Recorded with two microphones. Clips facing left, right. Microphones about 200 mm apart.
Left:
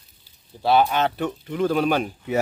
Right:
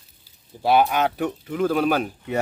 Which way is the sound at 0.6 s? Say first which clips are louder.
Even; 10° right (ahead or behind).